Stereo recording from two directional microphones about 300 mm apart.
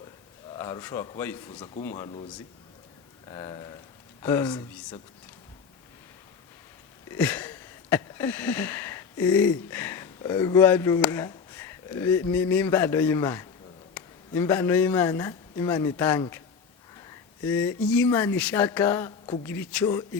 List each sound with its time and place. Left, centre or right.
0.5 s a man's voice: centre
3.2 s a man's voice: centre
7.1 s a sound: centre
13.9 s speech: centre
17.4 s a man's voice: centre